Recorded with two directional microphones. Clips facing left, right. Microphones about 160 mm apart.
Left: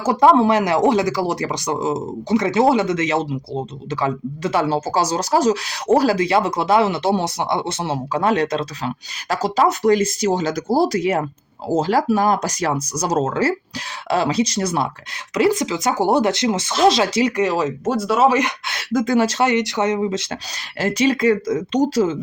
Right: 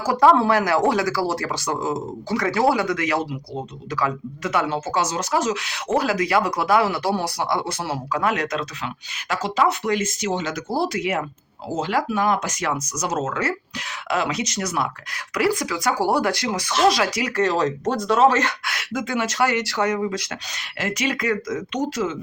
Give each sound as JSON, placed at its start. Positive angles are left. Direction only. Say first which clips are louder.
{"t": 0.0, "sound": "speech", "louder": "left 3 dB", "side_deg": 20}
{"t": 17.4, "sound": "speech", "louder": "left 1 dB", "side_deg": 10}
{"t": 18.6, "sound": "speech", "louder": "even", "side_deg": 25}
{"t": 18.9, "sound": "speech", "louder": "left 6 dB", "side_deg": 35}
{"t": 20.7, "sound": "speech", "louder": "left 7 dB", "side_deg": 35}